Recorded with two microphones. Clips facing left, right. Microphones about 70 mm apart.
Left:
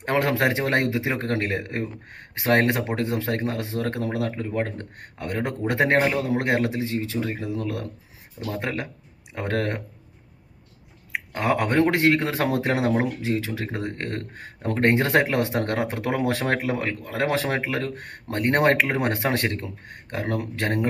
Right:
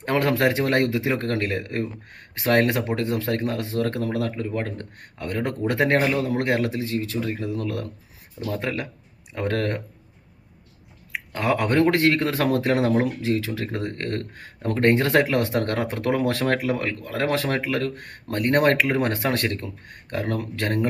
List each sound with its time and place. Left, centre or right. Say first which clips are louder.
0.0 s speech: right 1 dB; left
11.1 s speech: even; left